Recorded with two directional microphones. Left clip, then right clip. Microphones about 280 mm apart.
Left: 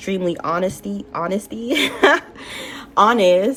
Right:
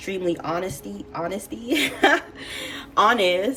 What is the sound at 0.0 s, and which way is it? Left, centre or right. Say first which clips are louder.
Speech: left 4 dB; left.